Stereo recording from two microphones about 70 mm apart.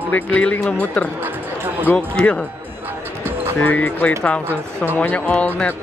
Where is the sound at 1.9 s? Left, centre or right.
Centre.